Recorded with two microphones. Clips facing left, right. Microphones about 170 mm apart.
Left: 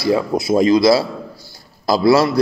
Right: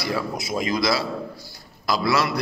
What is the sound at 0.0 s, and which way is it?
A man's voice, 30° left (ahead or behind).